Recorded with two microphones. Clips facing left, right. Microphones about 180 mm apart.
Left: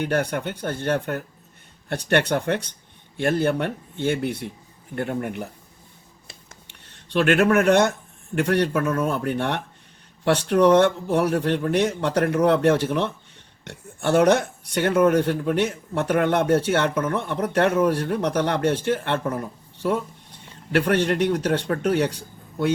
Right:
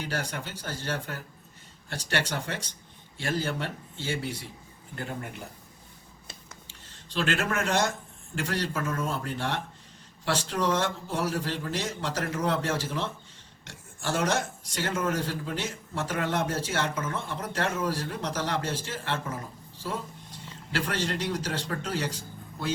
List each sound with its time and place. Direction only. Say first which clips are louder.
0.0 s speech: left 10 dB; 60° left (ahead or behind)
6.7 s speech: left 6 dB; 60° left (ahead or behind)